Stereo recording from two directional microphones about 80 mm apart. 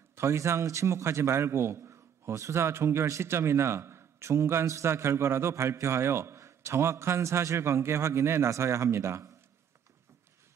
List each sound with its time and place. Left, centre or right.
0.1 s a man's voice: right